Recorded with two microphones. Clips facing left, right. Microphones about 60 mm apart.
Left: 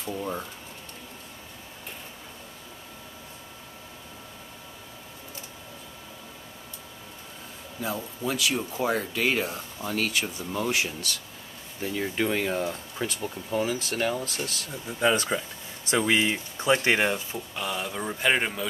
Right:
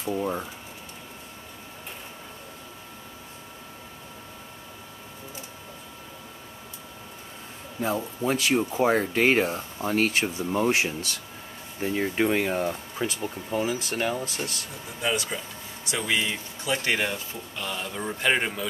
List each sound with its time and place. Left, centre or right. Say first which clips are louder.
0.0 s speech: right 4 dB; centre
7.8 s speech: right 4 dB; right; by 14.2 s centre
15.0 s speech: left 4 dB; left; by 18.7 s centre